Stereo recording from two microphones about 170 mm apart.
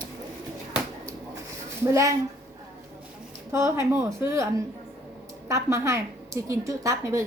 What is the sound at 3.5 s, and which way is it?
A woman's voice, 15° right (ahead or behind).